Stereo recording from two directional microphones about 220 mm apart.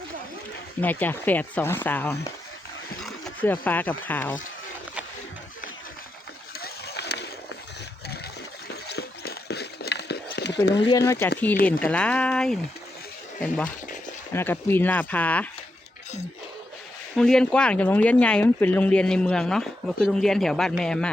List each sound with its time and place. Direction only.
0.8 s speech: 10° left (ahead or behind)
6.6 s a sound: 45° left (ahead or behind)
8.6 s a sound: 50° left (ahead or behind)
10.8 s speech: 15° left (ahead or behind)
13.7 s speech: 35° left (ahead or behind)
14.3 s speech: 10° left (ahead or behind)
17.2 s speech: centre (ahead or behind)